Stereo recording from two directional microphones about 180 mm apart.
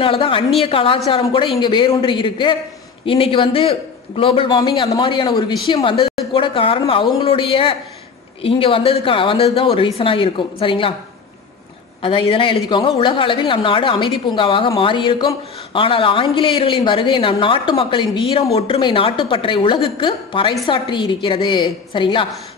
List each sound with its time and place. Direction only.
0.0 s a woman's voice: 30° left (ahead or behind)
12.0 s a woman's voice: 30° left (ahead or behind)